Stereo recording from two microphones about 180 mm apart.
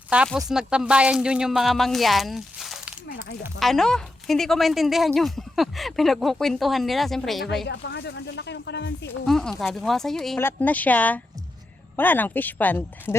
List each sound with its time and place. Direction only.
0.3 s speech: centre (ahead or behind)
7.7 s speech: 70° left (ahead or behind)
9.2 s speech: 5° left (ahead or behind)